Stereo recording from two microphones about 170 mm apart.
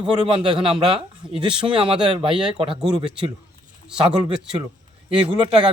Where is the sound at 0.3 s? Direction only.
30° right (ahead or behind).